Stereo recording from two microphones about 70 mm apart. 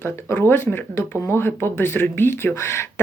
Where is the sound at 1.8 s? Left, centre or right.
Left.